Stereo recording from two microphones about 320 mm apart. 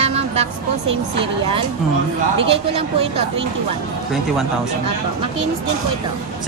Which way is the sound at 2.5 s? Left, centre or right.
Centre.